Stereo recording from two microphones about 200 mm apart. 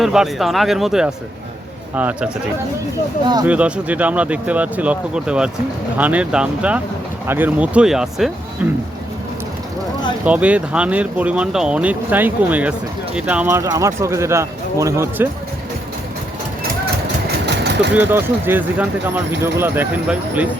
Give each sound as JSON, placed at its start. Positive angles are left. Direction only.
{"t": 0.0, "sound": "speech", "side_deg": 0}
{"t": 3.4, "sound": "speech", "side_deg": -5}
{"t": 10.2, "sound": "speech", "side_deg": -5}
{"t": 17.4, "sound": "engine", "side_deg": -60}
{"t": 17.9, "sound": "speech", "side_deg": -10}